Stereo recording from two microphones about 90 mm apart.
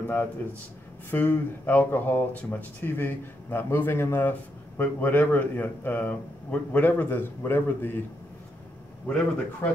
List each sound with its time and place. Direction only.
0.0 s a man's voice: 20° left (ahead or behind)
9.0 s speech: 20° left (ahead or behind)